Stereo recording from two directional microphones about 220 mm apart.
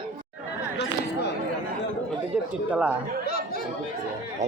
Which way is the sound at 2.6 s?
5° right (ahead or behind).